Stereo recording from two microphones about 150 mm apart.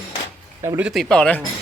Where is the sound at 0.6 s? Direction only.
10° right (ahead or behind).